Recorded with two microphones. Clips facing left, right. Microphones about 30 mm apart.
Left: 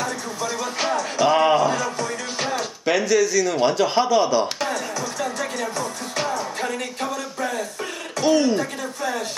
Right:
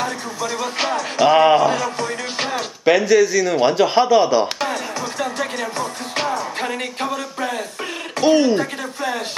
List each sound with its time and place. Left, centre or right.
0.4 s speech: right